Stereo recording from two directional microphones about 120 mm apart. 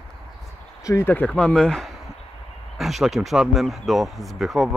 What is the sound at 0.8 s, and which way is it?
Speech, 25° left (ahead or behind).